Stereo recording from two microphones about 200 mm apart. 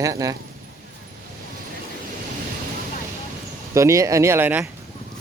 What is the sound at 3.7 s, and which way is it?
Speech, 15° right (ahead or behind).